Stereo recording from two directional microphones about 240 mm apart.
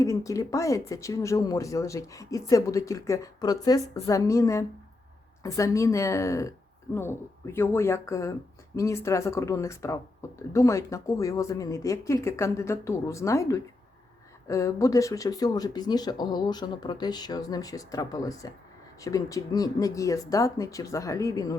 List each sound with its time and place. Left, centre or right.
0.0 s speech: centre